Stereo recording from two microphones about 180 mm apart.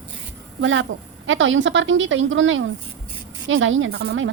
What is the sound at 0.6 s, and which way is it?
Speech, 90° right.